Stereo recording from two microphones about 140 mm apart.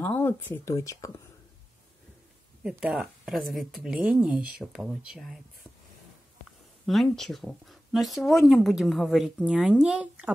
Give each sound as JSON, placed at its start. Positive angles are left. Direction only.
{"t": 0.0, "sound": "speech", "side_deg": 15}
{"t": 2.6, "sound": "speech", "side_deg": -5}
{"t": 6.9, "sound": "speech", "side_deg": 0}